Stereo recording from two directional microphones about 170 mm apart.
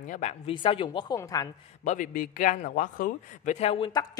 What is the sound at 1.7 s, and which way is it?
A man's voice, 45° left (ahead or behind).